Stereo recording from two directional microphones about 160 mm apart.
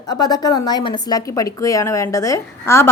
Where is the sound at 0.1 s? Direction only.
25° left (ahead or behind).